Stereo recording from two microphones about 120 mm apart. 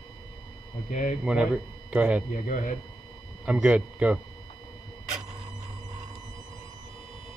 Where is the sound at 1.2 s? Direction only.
10° right (ahead or behind).